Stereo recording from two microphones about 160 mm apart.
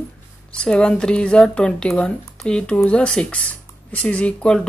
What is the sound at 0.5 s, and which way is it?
Speech, 5° left (ahead or behind).